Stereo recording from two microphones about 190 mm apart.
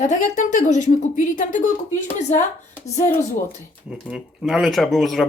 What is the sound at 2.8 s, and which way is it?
Speech, 35° left (ahead or behind).